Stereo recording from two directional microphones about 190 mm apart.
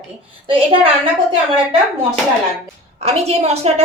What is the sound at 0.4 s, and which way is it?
Speech, 30° right (ahead or behind).